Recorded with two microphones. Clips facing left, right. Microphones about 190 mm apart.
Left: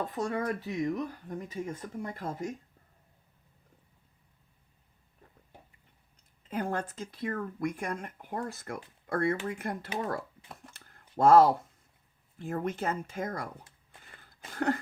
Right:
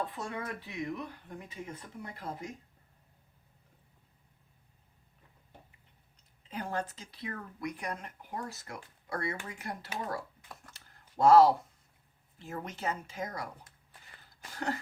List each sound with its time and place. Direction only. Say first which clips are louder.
0.0 s speech: left 6 dB; 45° left (ahead or behind)
6.5 s speech: left 4 dB; 50° left (ahead or behind)
10.8 s a sound: left 2 dB; 50° left (ahead or behind)
12.4 s speech: left 7 dB; 50° left (ahead or behind)